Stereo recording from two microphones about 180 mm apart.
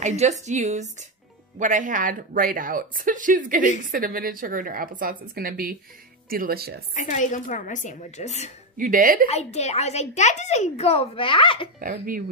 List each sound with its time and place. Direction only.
0.0 s a woman's voice: 40° right (ahead or behind); by 6.8 s 60° right (ahead or behind)
6.9 s speech: 40° left (ahead or behind)
8.7 s a woman's voice: 50° right (ahead or behind)
9.3 s a woman's voice: 35° left (ahead or behind)
11.8 s a woman's voice: 50° right (ahead or behind)